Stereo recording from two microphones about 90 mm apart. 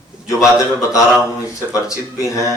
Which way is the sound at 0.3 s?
35° left (ahead or behind).